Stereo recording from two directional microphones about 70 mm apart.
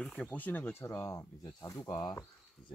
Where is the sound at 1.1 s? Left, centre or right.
Left.